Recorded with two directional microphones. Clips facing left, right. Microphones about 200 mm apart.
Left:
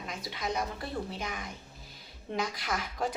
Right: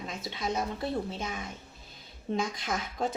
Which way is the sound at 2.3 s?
25° right (ahead or behind).